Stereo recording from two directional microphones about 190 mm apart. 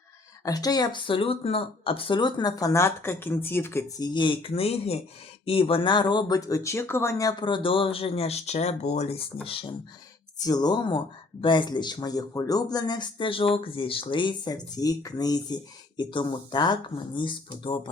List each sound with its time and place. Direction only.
0.4 s speech: 20° left (ahead or behind)